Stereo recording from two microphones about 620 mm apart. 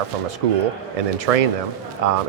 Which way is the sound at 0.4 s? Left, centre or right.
Right.